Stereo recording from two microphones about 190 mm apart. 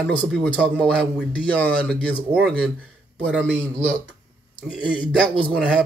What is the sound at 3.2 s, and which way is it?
Speech, 5° left (ahead or behind).